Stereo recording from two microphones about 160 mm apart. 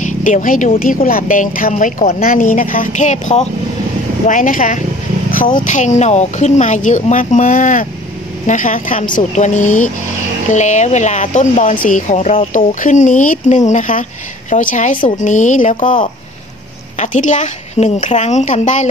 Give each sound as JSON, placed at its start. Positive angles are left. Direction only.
{"t": 0.0, "sound": "a woman's voice", "side_deg": 50}